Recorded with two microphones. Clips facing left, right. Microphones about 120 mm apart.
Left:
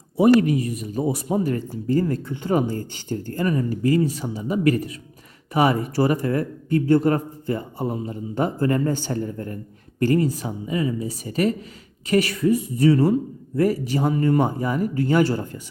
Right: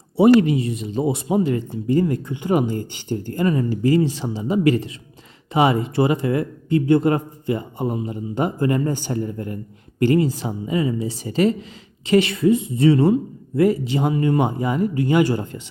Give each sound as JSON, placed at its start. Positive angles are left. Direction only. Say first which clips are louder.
{"t": 0.2, "sound": "speech", "louder": "right 2 dB", "side_deg": -30}